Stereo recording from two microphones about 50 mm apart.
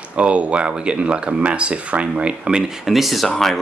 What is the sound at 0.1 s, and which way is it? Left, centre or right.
Speech, right.